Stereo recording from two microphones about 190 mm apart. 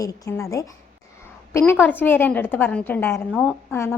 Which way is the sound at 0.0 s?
15° left (ahead or behind).